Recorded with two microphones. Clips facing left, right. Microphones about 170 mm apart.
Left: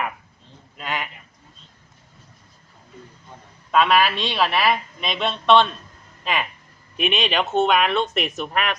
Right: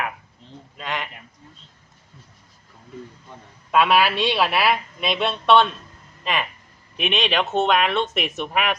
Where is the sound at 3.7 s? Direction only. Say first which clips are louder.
Even; 5° right (ahead or behind).